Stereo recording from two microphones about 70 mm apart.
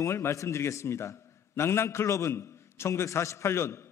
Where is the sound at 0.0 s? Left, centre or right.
Left.